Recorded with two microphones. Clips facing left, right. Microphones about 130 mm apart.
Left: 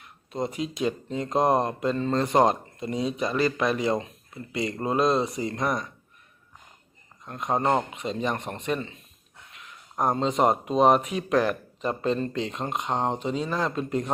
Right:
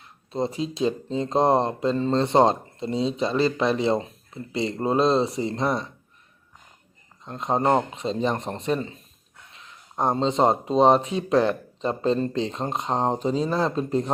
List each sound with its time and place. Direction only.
0.3 s speech: 30° right (ahead or behind)
7.3 s speech: 30° right (ahead or behind)
7.6 s speech: 10° right (ahead or behind)
7.9 s speech: 30° right (ahead or behind)
9.5 s a sound: 30° right (ahead or behind)
10.0 s speech: 30° right (ahead or behind)